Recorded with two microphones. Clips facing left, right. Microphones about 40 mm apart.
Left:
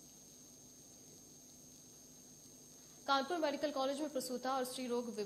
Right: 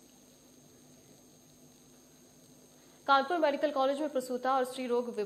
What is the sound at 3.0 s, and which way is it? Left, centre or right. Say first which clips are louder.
A woman's voice: right 9 dB; right.